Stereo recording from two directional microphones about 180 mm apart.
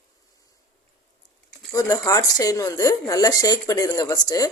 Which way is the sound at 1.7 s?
20° left (ahead or behind).